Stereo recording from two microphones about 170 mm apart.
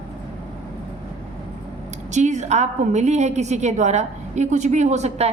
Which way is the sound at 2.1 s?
45° right (ahead or behind).